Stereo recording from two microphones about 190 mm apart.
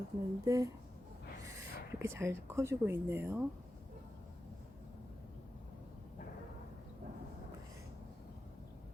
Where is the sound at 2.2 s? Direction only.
15° right (ahead or behind).